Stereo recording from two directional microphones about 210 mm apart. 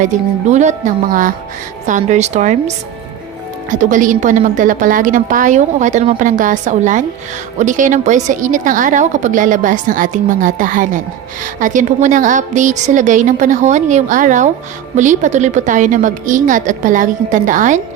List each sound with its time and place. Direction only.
0.0 s a woman's voice: 35° right (ahead or behind)